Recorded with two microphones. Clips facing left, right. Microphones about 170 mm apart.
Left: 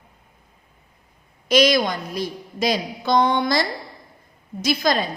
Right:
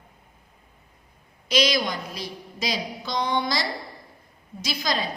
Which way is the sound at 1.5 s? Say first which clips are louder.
Left 6 dB; 50° left (ahead or behind).